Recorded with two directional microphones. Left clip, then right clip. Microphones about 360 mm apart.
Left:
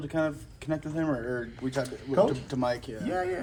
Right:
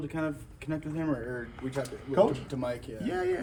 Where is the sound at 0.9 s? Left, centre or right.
Centre.